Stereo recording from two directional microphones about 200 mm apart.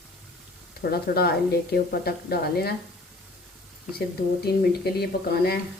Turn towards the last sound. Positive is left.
turn(degrees=50)  # may be behind; listen again after turning